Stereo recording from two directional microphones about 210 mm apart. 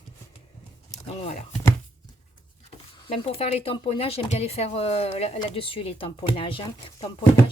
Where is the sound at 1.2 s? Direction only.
30° left (ahead or behind).